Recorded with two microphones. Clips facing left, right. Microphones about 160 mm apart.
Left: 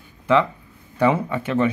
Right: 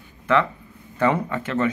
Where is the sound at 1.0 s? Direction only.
10° left (ahead or behind).